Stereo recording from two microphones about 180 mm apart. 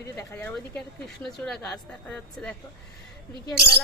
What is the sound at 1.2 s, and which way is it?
A woman's voice, centre (ahead or behind).